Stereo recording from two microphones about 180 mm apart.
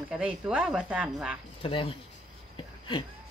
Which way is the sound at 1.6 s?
30° left (ahead or behind).